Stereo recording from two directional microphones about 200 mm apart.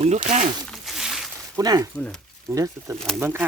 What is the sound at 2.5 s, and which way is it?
Wild animals, 15° right (ahead or behind).